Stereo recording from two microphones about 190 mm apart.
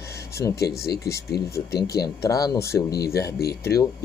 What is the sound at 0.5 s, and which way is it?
Speech, 55° left (ahead or behind).